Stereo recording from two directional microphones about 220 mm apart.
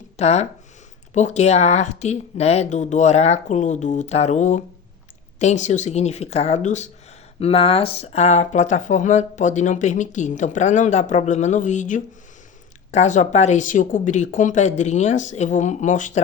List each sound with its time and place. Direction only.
0.2 s speech: 30° left (ahead or behind)